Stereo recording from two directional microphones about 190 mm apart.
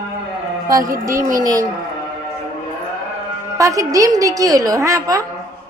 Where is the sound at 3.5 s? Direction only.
15° right (ahead or behind).